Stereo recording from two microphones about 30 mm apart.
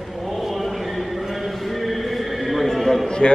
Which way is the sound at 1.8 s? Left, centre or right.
Centre.